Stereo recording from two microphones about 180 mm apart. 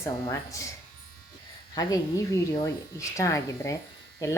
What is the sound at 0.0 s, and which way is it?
Speech, 15° left (ahead or behind).